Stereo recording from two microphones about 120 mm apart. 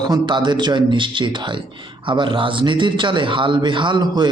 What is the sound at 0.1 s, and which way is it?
A man's voice, 40° right (ahead or behind).